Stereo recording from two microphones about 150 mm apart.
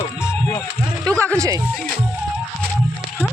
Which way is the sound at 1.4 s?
25° right (ahead or behind).